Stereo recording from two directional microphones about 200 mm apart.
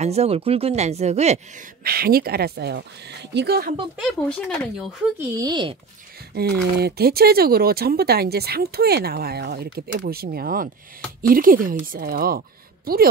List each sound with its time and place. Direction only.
0.0 s speech: 30° right (ahead or behind)
1.9 s speech: 50° right (ahead or behind)
4.0 s speech: 5° left (ahead or behind)
5.4 s speech: 25° right (ahead or behind)
6.3 s speech: 50° right (ahead or behind)